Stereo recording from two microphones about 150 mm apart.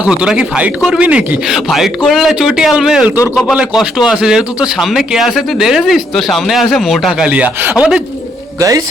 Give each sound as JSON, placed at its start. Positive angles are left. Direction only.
{"t": 0.0, "sound": "speech", "side_deg": -5}
{"t": 8.5, "sound": "speech", "side_deg": -20}